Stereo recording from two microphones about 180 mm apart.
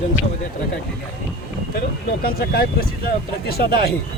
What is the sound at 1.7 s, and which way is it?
Speech, 55° left (ahead or behind).